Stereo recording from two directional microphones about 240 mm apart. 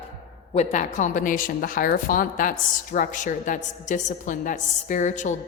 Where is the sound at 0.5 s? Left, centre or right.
Left.